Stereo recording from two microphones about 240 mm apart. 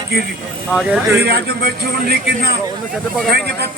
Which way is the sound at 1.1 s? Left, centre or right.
Right.